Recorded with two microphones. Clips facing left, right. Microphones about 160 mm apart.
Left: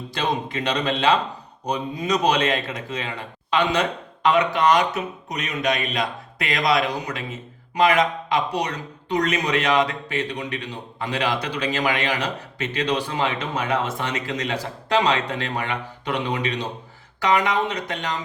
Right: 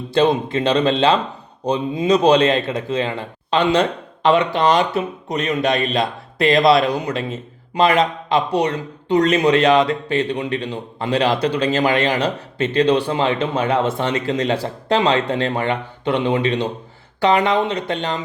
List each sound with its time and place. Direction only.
0.1 s a man's voice: 30° right (ahead or behind)